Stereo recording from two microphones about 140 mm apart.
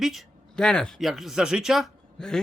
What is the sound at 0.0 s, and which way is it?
Speech, centre (ahead or behind).